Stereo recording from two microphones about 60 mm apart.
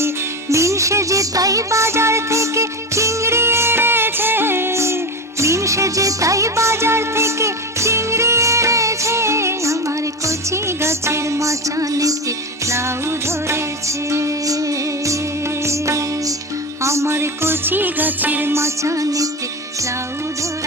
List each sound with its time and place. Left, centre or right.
0.5 s music: right
12.6 s music: right
18.5 s music: right